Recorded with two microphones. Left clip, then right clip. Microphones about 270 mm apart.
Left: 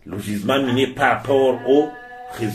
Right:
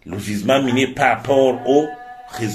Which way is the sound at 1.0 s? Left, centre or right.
Right.